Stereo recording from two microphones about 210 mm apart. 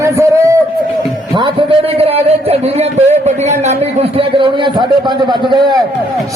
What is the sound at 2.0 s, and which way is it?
A man's voice, 30° right (ahead or behind).